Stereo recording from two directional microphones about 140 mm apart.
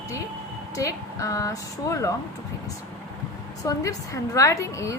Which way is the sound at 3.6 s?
25° left (ahead or behind).